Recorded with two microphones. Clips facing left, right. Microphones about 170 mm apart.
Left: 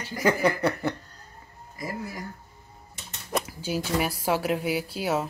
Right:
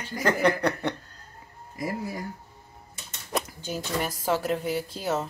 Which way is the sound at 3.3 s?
5° left (ahead or behind).